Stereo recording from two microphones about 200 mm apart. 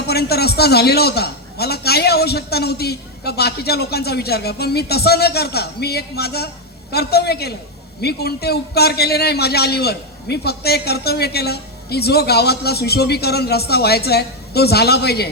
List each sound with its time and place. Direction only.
0.1 s a man's voice: 55° left (ahead or behind)